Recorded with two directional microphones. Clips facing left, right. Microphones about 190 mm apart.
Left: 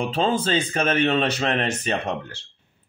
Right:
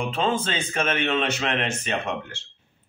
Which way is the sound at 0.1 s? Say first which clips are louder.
Left 3 dB; 35° left (ahead or behind).